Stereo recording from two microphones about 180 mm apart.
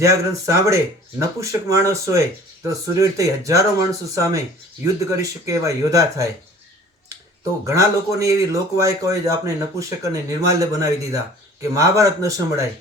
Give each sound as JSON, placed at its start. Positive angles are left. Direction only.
{"t": 0.0, "sound": "speech", "side_deg": -15}
{"t": 7.6, "sound": "speech", "side_deg": -15}